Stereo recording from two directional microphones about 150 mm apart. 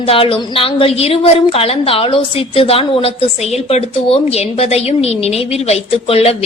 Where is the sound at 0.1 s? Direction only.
35° left (ahead or behind).